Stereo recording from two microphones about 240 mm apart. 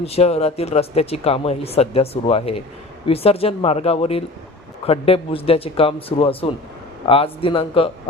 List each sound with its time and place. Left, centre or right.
0.0 s speech: left